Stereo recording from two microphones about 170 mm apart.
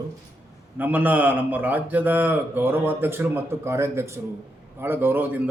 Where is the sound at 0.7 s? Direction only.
10° right (ahead or behind).